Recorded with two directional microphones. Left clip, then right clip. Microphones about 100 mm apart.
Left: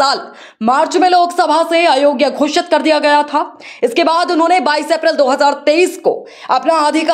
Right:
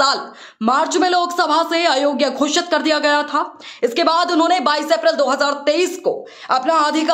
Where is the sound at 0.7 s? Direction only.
30° left (ahead or behind).